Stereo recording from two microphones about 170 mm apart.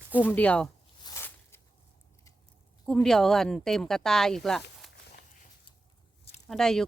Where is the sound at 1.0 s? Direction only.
15° left (ahead or behind).